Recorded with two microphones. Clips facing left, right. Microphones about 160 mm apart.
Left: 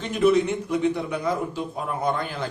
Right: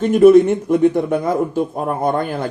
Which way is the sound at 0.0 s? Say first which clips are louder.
Right 11 dB; 50° right (ahead or behind).